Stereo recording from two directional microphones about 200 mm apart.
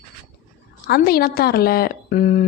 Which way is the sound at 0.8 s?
50° left (ahead or behind).